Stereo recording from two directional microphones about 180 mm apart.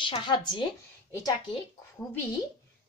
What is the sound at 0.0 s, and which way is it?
Speech, 25° left (ahead or behind).